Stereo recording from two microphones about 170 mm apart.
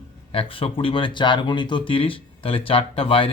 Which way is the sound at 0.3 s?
30° left (ahead or behind).